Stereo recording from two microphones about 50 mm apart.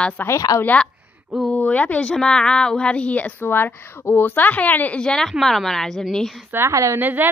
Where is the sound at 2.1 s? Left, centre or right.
Centre.